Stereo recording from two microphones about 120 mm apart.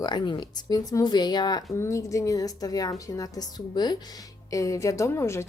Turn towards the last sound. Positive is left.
turn(degrees=25)  # may be behind; listen again after turning